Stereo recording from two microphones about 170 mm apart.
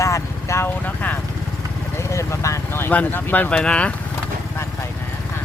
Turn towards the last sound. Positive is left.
turn(degrees=5)  # may be behind; listen again after turning